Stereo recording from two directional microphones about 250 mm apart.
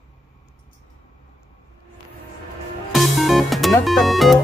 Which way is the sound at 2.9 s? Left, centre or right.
Centre.